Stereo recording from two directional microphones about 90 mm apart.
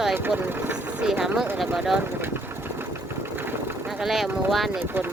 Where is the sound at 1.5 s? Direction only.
5° right (ahead or behind).